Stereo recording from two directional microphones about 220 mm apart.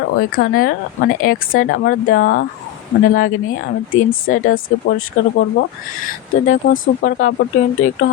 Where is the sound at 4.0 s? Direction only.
40° left (ahead or behind).